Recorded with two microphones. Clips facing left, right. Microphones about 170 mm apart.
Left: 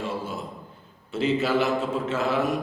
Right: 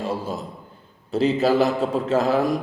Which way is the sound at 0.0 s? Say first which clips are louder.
Right 4 dB; 40° right (ahead or behind).